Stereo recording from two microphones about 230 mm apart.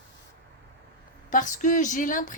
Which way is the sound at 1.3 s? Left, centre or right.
Left.